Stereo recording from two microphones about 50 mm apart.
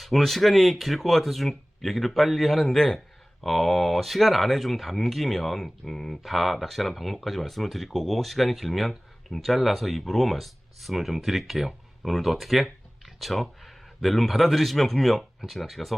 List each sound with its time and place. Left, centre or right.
0.0 s speech: centre